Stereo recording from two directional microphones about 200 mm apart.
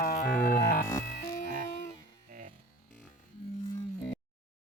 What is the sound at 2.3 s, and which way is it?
Music, 40° right (ahead or behind).